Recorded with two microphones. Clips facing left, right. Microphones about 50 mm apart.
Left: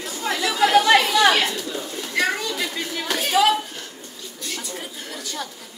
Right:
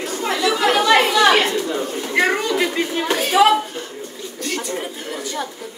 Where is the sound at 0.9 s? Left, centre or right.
Right.